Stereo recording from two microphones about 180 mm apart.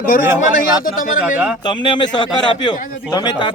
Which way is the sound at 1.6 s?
25° left (ahead or behind).